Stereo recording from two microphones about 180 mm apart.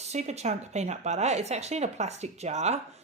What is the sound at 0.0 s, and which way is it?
A woman's voice, 40° right (ahead or behind).